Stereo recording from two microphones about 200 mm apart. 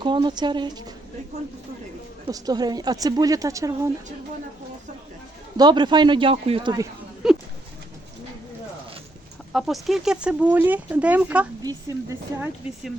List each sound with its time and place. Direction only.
0.0 s speech: 25° right (ahead or behind)
2.2 s a woman's voice: 20° right (ahead or behind)
5.5 s speech: 20° right (ahead or behind)
7.2 s speech: centre (ahead or behind)
9.5 s speech: centre (ahead or behind)
11.6 s a woman's voice: 15° right (ahead or behind)